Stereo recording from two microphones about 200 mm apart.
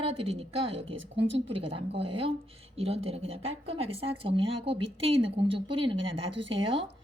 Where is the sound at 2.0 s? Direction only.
25° right (ahead or behind).